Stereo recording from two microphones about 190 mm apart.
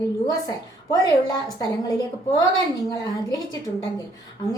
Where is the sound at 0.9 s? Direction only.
20° left (ahead or behind).